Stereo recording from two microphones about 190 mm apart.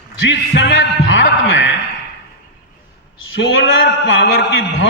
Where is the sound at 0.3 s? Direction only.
65° left (ahead or behind).